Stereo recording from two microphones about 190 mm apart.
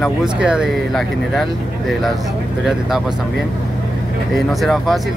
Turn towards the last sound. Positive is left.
turn(degrees=0)  # may be behind; listen again after turning